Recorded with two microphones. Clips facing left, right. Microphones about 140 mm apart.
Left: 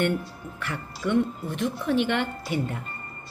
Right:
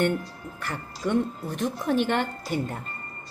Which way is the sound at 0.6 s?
40° right (ahead or behind).